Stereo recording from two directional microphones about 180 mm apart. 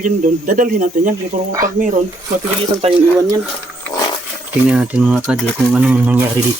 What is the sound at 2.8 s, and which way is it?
Speech, 35° right (ahead or behind).